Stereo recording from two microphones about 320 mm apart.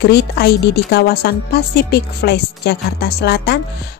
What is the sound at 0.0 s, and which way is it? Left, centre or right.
A woman's voice, left.